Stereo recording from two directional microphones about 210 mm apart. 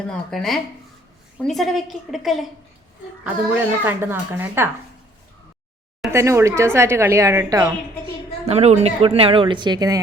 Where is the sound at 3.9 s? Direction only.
10° right (ahead or behind).